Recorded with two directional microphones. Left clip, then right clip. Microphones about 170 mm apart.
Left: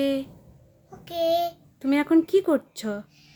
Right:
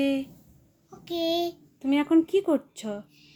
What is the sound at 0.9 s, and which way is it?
A child's voice, 15° left (ahead or behind).